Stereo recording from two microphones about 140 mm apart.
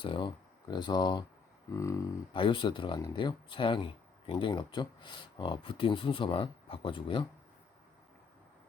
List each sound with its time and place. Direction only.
0.0 s speech: 35° left (ahead or behind)
1.7 s a sound: 20° left (ahead or behind)
2.3 s speech: 35° left (ahead or behind)